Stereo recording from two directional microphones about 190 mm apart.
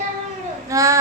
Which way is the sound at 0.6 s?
15° right (ahead or behind).